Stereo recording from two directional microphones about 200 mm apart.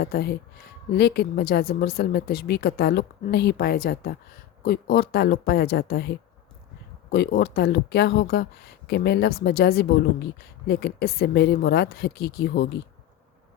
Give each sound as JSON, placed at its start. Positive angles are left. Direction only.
{"t": 0.0, "sound": "a woman's voice", "side_deg": 50}